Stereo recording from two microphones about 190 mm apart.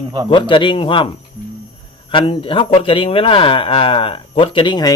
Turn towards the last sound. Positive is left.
turn(degrees=20)  # may be behind; listen again after turning